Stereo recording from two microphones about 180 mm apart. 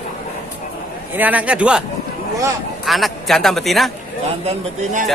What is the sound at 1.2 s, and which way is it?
Speech, 10° right (ahead or behind).